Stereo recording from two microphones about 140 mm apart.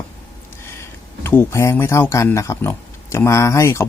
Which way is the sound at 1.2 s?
20° left (ahead or behind).